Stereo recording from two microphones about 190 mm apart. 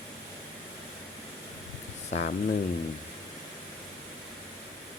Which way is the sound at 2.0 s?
40° left (ahead or behind).